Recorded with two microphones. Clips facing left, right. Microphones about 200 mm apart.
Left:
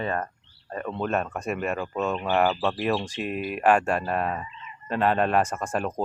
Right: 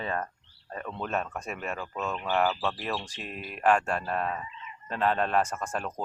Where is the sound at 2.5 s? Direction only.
20° left (ahead or behind).